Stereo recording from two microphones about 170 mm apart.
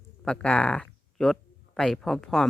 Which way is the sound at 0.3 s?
5° left (ahead or behind).